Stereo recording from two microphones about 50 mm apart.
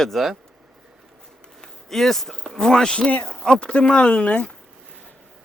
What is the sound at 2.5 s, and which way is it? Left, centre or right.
Speech, centre.